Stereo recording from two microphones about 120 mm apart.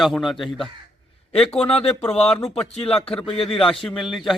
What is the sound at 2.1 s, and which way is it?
Speech, 55° left (ahead or behind).